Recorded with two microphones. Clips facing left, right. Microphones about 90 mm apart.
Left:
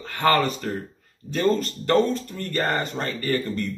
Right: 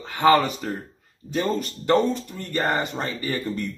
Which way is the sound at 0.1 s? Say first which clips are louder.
Right 3 dB; 15° right (ahead or behind).